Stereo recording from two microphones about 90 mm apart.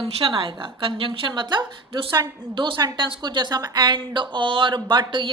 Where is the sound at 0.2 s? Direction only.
70° right (ahead or behind).